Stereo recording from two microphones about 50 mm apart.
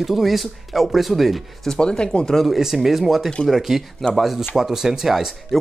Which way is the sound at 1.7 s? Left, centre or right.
Centre.